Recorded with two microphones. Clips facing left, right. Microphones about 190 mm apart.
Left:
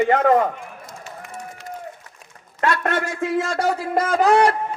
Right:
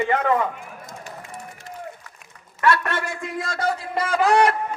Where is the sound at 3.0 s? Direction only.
90° left.